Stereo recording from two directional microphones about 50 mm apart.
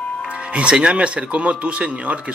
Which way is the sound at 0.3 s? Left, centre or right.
Right.